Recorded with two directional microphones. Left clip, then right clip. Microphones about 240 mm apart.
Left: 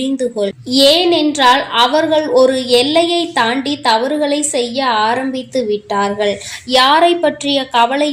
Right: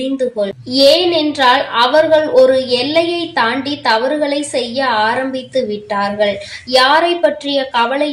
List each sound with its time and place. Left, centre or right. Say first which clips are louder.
0.2 s a woman's voice: even; left